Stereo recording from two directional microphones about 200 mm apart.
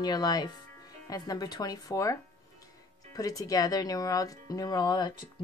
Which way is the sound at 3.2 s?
15° left (ahead or behind).